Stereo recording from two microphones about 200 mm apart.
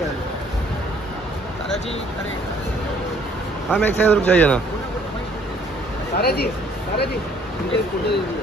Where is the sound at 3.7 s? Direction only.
10° left (ahead or behind).